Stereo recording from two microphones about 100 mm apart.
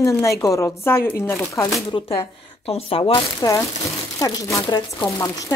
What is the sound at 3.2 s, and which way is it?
Speech, 35° left (ahead or behind).